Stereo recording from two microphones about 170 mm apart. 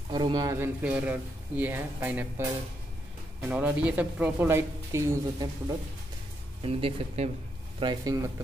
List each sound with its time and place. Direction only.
0.1 s speech: 25° right (ahead or behind)
0.8 s speech: 10° right (ahead or behind)
6.6 s speech: 35° right (ahead or behind)
7.8 s speech: 25° right (ahead or behind)